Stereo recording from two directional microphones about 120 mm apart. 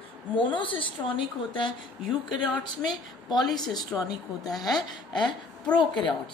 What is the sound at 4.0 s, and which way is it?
Speech, 30° left (ahead or behind).